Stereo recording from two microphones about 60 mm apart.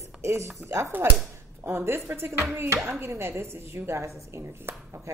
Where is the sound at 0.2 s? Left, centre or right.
Right.